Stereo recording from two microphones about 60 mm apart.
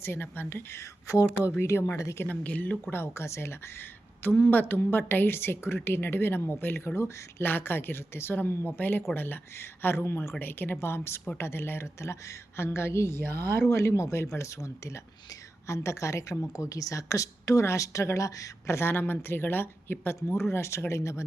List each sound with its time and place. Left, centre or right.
0.0 s a woman's voice: left
1.0 s speech: left
1.5 s a woman's voice: left
2.0 s speech: left
2.2 s speech: left
2.9 s a woman's voice: left
7.4 s a woman's voice: left
16.5 s speech: left
18.8 s a woman's voice: left